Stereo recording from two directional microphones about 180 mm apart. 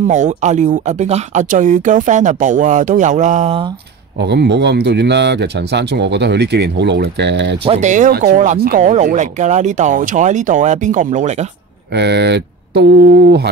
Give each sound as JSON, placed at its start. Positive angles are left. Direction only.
{"t": 0.1, "sound": "speech", "side_deg": -40}
{"t": 4.2, "sound": "speech", "side_deg": -70}
{"t": 7.6, "sound": "speech", "side_deg": -40}
{"t": 8.1, "sound": "speech", "side_deg": -65}
{"t": 8.5, "sound": "speech", "side_deg": -55}
{"t": 11.9, "sound": "speech", "side_deg": -70}